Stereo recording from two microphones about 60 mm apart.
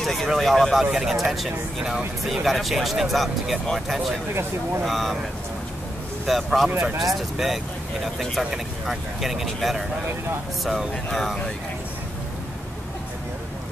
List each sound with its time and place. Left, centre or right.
0.0 s speech: centre
4.3 s speech: right
4.8 s speech: centre
6.2 s speech: centre